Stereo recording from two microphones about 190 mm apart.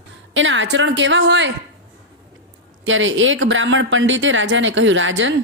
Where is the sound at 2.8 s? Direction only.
85° right.